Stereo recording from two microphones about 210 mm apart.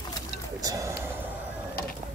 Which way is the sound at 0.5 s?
15° right (ahead or behind).